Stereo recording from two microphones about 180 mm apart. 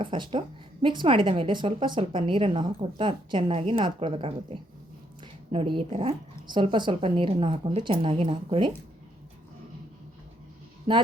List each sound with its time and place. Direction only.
0.0 s a woman's voice: 30° right (ahead or behind)